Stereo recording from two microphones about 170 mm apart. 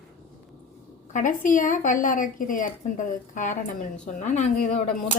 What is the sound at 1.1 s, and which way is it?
A woman's voice, 50° left (ahead or behind).